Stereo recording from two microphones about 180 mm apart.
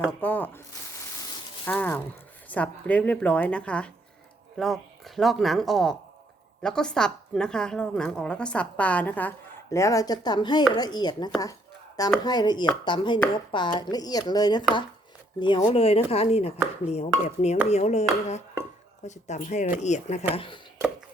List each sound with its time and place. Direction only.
0.2 s a woman's voice: 10° left (ahead or behind)
1.6 s a woman's voice: 10° left (ahead or behind); by 20.2 s 40° left (ahead or behind)
20.3 s speech: 30° left (ahead or behind)